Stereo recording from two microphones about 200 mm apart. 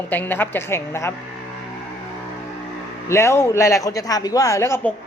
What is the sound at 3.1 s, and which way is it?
Speech, 15° left (ahead or behind).